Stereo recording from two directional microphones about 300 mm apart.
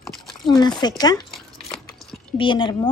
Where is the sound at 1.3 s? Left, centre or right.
Centre.